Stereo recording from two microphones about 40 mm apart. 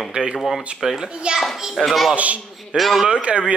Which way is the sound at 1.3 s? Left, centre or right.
Right.